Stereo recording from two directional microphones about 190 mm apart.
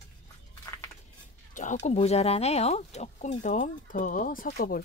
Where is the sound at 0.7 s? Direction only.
15° left (ahead or behind).